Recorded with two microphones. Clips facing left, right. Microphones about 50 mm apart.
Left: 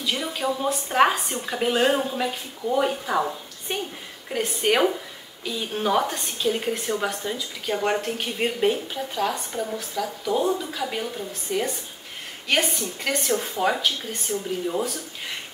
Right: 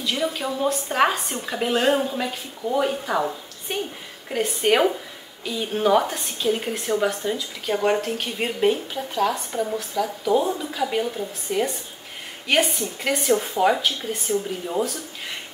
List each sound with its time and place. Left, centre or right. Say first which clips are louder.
0.0 s a woman's voice: right 1 dB; centre